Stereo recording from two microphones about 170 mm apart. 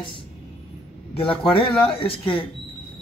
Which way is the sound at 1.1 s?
30° left (ahead or behind).